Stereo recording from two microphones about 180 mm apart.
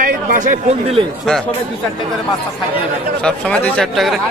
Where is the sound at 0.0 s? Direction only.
45° right (ahead or behind).